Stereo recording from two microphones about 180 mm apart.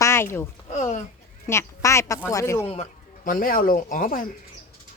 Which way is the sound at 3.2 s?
50° left (ahead or behind).